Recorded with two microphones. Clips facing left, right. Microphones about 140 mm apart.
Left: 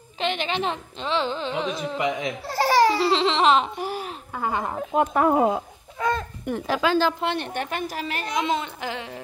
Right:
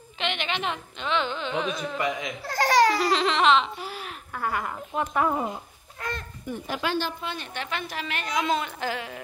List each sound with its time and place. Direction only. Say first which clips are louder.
0.2 s carnatic music: left 4 dB; 35° left (ahead or behind)
3.5 s a sound: left 2 dB; 45° left (ahead or behind)
4.4 s a woman's voice: left 3 dB; 25° left (ahead or behind)
4.9 s carnatic music: left 5 dB; 35° left (ahead or behind)
5.3 s a woman's voice: left 9 dB; 90° left
7.5 s carnatic music: left 4 dB; 45° left (ahead or behind)
8.3 s a woman's voice: even; 25° left (ahead or behind)